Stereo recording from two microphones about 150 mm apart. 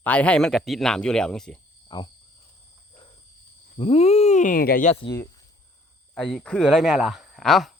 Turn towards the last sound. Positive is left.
turn(degrees=0)  # may be behind; listen again after turning